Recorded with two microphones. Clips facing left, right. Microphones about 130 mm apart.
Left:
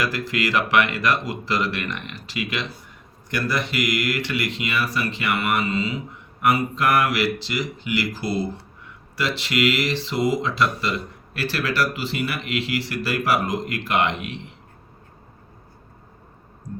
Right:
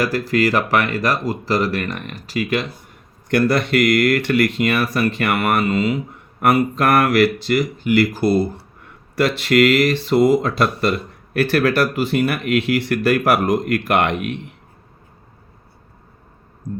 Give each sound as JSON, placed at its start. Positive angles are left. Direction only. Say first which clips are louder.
{"t": 0.0, "sound": "speech", "louder": "right 7 dB", "side_deg": -40}
{"t": 3.2, "sound": "speech", "louder": "right 8 dB", "side_deg": -60}